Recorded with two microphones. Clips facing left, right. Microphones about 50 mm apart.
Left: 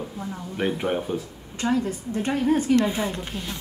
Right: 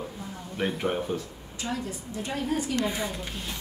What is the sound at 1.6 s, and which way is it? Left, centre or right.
A woman's voice, left.